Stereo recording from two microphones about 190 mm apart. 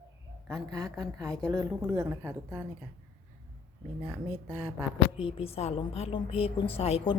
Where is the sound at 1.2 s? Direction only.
5° left (ahead or behind).